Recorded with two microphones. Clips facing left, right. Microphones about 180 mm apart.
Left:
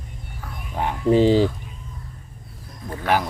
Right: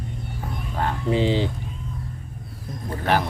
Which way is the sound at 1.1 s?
40° left (ahead or behind).